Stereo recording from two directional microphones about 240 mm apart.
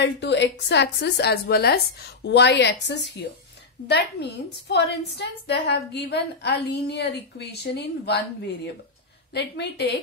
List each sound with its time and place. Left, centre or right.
0.0 s a woman's voice: left